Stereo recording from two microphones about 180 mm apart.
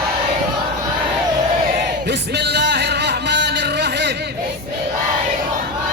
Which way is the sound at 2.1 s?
70° right (ahead or behind).